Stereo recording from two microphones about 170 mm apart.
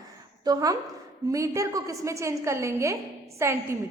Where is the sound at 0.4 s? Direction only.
20° right (ahead or behind).